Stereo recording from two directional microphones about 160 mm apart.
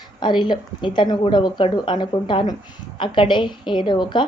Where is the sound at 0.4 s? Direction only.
30° left (ahead or behind).